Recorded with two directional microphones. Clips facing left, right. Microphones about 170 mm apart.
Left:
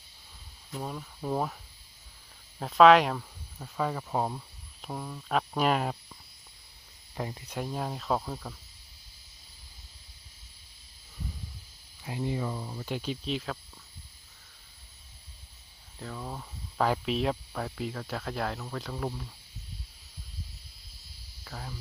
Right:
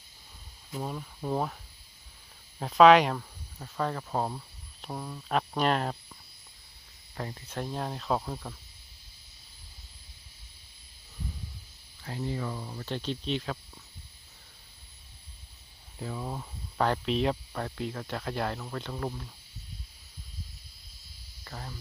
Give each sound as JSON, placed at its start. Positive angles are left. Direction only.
{"t": 0.7, "sound": "speech", "side_deg": -5}
{"t": 2.6, "sound": "speech", "side_deg": 0}
{"t": 7.2, "sound": "speech", "side_deg": 15}
{"t": 12.0, "sound": "speech", "side_deg": 15}
{"t": 16.0, "sound": "speech", "side_deg": -10}
{"t": 21.4, "sound": "speech", "side_deg": 0}